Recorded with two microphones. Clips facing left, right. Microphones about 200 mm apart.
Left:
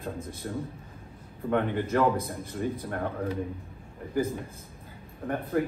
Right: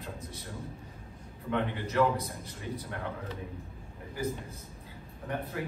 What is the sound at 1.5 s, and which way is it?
Speech, 50° left (ahead or behind).